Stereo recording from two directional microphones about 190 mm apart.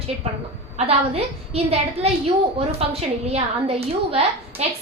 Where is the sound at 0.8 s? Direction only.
30° right (ahead or behind).